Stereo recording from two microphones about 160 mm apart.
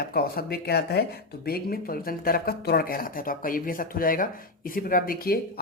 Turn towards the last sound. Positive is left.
turn(degrees=70)  # may be behind; listen again after turning